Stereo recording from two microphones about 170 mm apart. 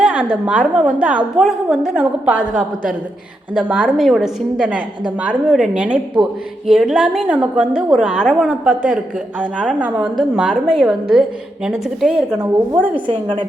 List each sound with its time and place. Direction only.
0.0 s a woman's voice: 5° right (ahead or behind)
3.5 s a woman's voice: 5° right (ahead or behind)
12.9 s a woman's voice: 30° right (ahead or behind)